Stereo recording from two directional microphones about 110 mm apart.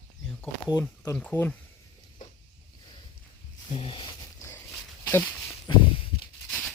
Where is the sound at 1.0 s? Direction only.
15° left (ahead or behind).